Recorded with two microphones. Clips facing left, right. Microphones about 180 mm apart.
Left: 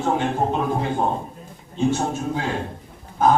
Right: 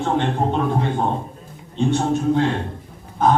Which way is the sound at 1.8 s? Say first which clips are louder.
Right 2 dB; 5° left (ahead or behind).